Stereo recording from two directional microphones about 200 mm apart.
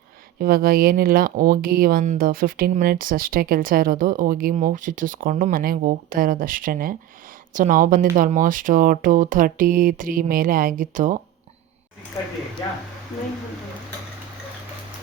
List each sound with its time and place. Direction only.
0.3 s speech: 45° right (ahead or behind)